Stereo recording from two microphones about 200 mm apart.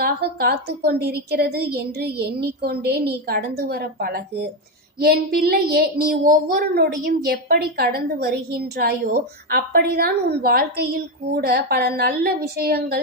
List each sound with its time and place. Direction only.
0.0 s a woman's voice: 50° right (ahead or behind)